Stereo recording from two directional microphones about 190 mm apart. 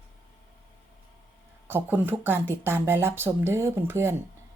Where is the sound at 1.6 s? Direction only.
10° right (ahead or behind).